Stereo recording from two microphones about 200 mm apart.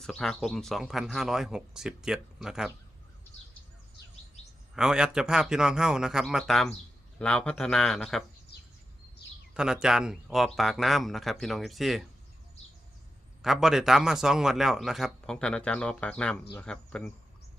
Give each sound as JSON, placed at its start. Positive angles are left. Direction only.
{"t": 0.0, "sound": "a man's voice", "side_deg": 5}
{"t": 4.7, "sound": "a man's voice", "side_deg": -5}
{"t": 8.5, "sound": "bird", "side_deg": 55}
{"t": 9.6, "sound": "a man's voice", "side_deg": -5}
{"t": 13.4, "sound": "a man's voice", "side_deg": 0}